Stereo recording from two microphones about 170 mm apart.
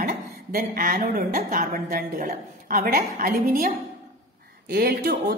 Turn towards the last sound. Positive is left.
turn(degrees=-65)  # may be behind; listen again after turning